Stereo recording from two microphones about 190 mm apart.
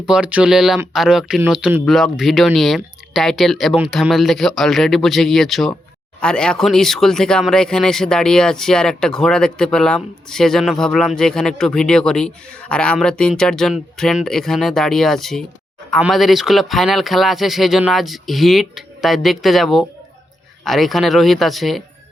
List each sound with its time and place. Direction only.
0.0 s speech: 5° right (ahead or behind)